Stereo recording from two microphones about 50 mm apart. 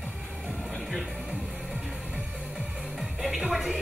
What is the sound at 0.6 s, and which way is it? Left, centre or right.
Music, centre.